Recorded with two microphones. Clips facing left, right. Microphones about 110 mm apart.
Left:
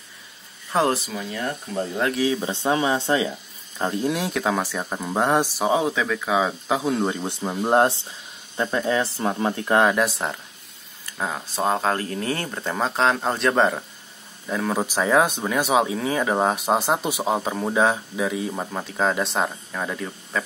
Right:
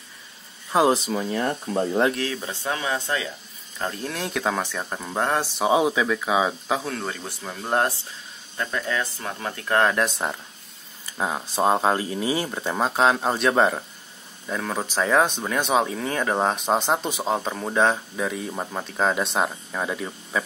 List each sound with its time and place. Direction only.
0.7 s speech: 10° right (ahead or behind)
1.1 s speech: 35° right (ahead or behind)
2.1 s speech: 15° left (ahead or behind)
4.3 s speech: centre (ahead or behind)
5.6 s speech: 10° right (ahead or behind)
6.8 s speech: 15° left (ahead or behind)
9.8 s speech: 5° left (ahead or behind)
11.1 s speech: 15° right (ahead or behind)